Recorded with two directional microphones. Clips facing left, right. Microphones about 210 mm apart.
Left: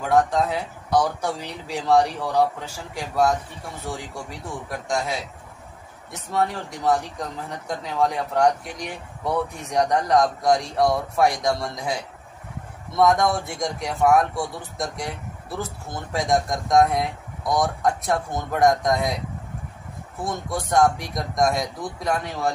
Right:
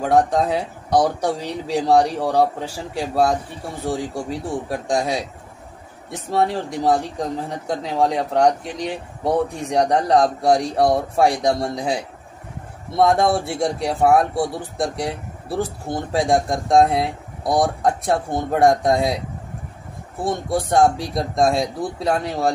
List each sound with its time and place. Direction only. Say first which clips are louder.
0.0 s speech: right 3 dB; 30° right (ahead or behind)
20.2 s speech: right 6 dB; 30° right (ahead or behind)